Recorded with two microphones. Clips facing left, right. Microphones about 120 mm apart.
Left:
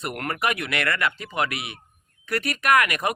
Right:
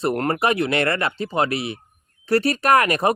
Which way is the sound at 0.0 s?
30° right (ahead or behind).